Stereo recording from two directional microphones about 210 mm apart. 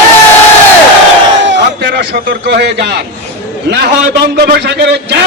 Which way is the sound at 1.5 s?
50° right (ahead or behind).